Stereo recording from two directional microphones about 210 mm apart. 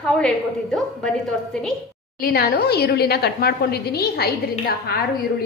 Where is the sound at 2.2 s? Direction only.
45° left (ahead or behind).